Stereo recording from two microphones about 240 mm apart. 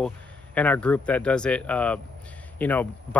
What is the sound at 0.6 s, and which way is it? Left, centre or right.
Speech, centre.